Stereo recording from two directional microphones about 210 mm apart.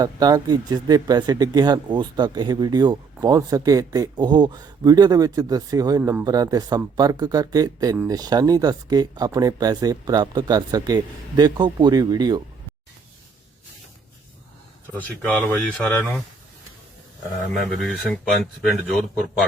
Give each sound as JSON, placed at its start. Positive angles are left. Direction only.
{"t": 0.0, "sound": "speech", "side_deg": -20}
{"t": 14.9, "sound": "speech", "side_deg": 10}
{"t": 17.7, "sound": "a man's voice", "side_deg": 0}